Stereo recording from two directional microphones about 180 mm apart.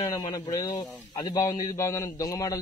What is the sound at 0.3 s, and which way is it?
A man's voice, 20° left (ahead or behind).